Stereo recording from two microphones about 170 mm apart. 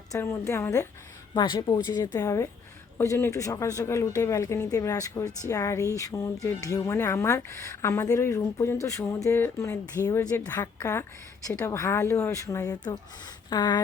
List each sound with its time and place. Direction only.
0.1 s speech: 15° left (ahead or behind)